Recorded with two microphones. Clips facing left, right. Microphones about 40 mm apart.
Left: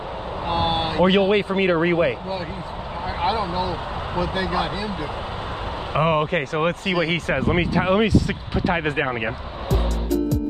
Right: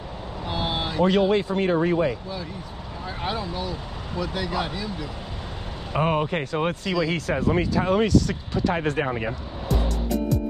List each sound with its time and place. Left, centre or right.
0.5 s speech: left
3.3 s speech: left
5.9 s speech: left
8.1 s speech: left
8.9 s speech: left
9.8 s music: centre